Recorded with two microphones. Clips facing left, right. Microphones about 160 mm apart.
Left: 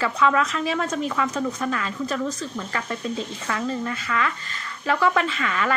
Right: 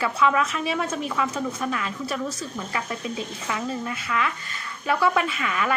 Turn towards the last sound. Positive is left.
turn(degrees=-10)  # may be behind; listen again after turning